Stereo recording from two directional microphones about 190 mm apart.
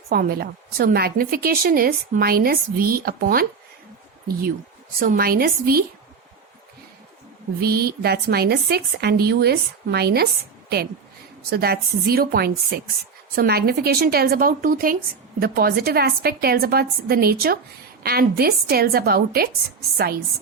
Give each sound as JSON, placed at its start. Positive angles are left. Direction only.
{"t": 0.1, "sound": "a woman's voice", "side_deg": -55}
{"t": 7.6, "sound": "a woman's voice", "side_deg": -55}
{"t": 11.5, "sound": "a woman's voice", "side_deg": -55}